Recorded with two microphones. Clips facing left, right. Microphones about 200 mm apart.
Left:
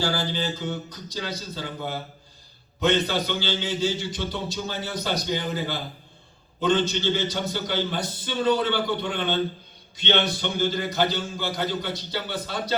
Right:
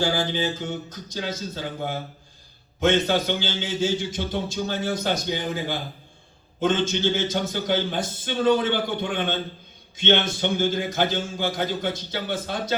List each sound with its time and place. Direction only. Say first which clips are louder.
0.0 s a man's voice: right 3 dB; 50° right (ahead or behind)